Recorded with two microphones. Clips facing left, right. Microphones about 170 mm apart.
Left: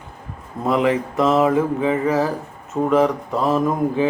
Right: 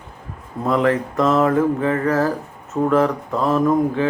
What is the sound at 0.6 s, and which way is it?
Speech, 5° left (ahead or behind).